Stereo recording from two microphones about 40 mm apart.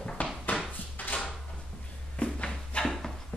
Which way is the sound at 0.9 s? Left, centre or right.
Left.